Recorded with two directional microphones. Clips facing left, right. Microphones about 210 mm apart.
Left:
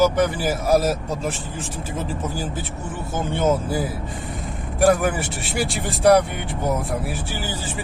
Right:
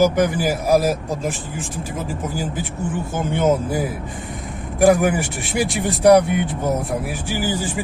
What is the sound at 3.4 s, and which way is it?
Speech, 20° right (ahead or behind).